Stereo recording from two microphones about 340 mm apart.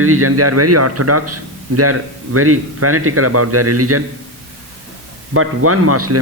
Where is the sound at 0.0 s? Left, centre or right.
Right.